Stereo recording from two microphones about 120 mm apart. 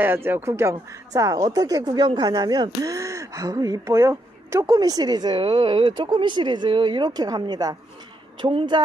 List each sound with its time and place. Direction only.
0.0 s speech: 20° right (ahead or behind); by 8.8 s 45° right (ahead or behind)